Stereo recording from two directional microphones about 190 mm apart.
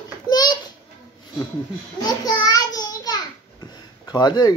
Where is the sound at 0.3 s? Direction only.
20° left (ahead or behind).